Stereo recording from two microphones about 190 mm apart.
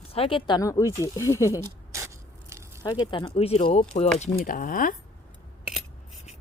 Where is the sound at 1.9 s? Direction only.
15° right (ahead or behind).